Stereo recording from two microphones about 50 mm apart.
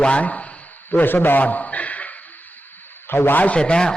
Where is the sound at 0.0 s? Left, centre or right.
Left.